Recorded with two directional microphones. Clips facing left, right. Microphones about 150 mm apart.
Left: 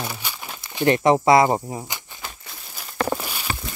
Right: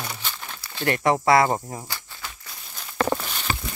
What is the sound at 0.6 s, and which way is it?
Speech, 20° left (ahead or behind).